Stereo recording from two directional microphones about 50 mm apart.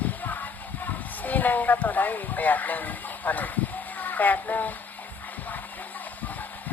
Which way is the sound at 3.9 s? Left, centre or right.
Left.